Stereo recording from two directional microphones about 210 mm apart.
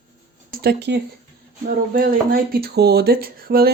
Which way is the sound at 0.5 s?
50° right (ahead or behind).